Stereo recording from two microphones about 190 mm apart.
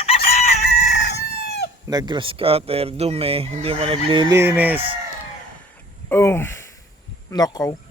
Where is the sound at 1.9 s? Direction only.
20° right (ahead or behind).